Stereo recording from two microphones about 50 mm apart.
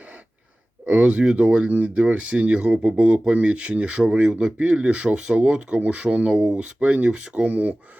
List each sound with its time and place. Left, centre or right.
0.9 s speech: right